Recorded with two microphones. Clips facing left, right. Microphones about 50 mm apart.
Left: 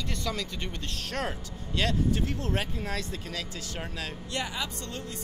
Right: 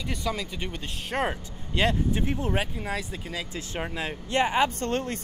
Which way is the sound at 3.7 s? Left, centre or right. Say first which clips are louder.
Right 6 dB; right.